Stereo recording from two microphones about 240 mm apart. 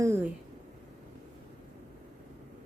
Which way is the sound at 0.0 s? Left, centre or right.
Centre.